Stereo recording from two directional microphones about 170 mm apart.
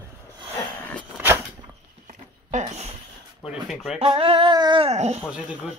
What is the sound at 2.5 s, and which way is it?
Speech, 45° right (ahead or behind).